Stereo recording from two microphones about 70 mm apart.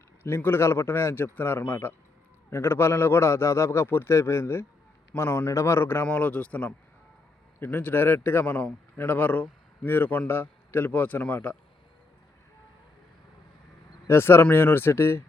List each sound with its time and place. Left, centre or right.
0.2 s a man's voice: left
6.1 s a man's voice: left
14.1 s a man's voice: left